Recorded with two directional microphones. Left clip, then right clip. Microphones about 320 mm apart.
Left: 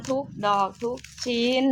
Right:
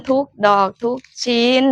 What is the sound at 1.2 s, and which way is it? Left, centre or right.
Speech, centre.